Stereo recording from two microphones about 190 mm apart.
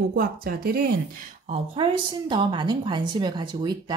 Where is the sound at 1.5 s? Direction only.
25° right (ahead or behind).